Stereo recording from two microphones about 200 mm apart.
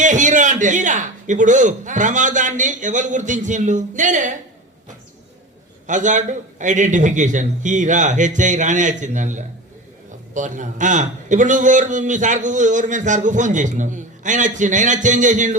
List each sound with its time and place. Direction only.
0.0 s a man's voice: 40° right (ahead or behind)
5.9 s a man's voice: 40° right (ahead or behind)